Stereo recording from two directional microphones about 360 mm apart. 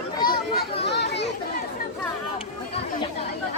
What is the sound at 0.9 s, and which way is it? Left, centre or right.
Chatter, left.